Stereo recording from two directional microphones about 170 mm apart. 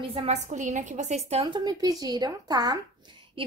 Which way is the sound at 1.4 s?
25° right (ahead or behind).